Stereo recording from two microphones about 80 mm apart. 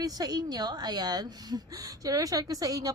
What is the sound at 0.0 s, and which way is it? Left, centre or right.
A woman's voice, right.